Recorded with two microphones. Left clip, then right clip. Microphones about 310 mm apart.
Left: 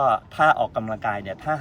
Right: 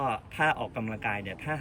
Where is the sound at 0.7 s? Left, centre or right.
Left.